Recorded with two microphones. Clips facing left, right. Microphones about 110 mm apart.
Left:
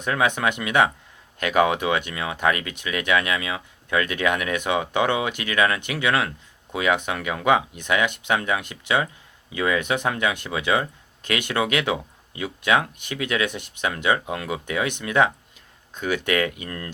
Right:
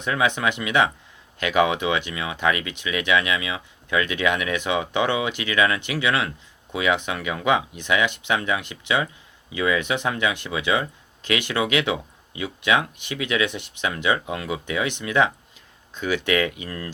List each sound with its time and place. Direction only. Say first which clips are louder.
0.0 s speech: even; 40° left (ahead or behind)